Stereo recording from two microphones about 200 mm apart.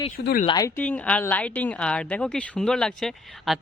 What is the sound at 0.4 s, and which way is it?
Speech, 20° left (ahead or behind).